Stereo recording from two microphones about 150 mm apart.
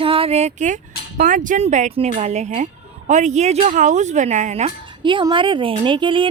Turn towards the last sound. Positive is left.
turn(degrees=-35)  # may be behind; listen again after turning